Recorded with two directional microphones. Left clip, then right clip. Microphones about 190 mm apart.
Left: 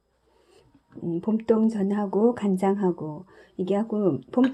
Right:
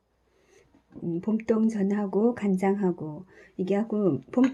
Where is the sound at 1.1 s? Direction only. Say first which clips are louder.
Left 3 dB; 5° left (ahead or behind).